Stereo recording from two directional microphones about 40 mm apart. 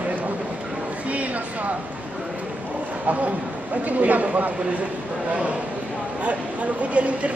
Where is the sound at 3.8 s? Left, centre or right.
Right.